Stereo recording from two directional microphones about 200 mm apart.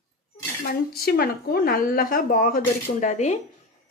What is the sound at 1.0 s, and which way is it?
A woman's voice, 50° left (ahead or behind).